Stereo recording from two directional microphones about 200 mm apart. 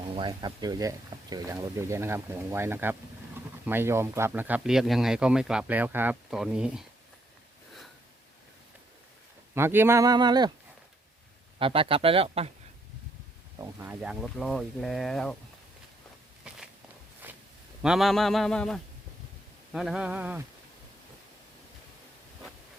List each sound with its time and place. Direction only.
0.2 s speech: 20° right (ahead or behind); by 6.8 s 5° right (ahead or behind)
9.6 s speech: 10° right (ahead or behind)
11.6 s speech: 25° right (ahead or behind)
13.6 s speech: 10° right (ahead or behind)
17.2 s zipper: 10° right (ahead or behind)
17.8 s speech: centre (ahead or behind)